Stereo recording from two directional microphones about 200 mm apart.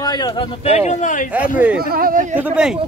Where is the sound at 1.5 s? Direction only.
5° right (ahead or behind).